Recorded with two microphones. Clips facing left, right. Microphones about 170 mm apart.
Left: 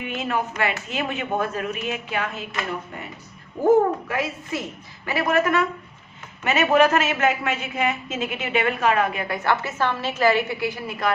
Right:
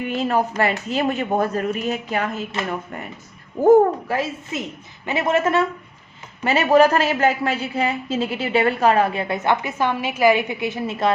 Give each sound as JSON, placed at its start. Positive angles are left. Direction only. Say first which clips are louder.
{"t": 0.1, "sound": "a woman's voice", "louder": "right 5 dB", "side_deg": -35}
{"t": 4.1, "sound": "a woman's voice", "louder": "right 2 dB", "side_deg": -25}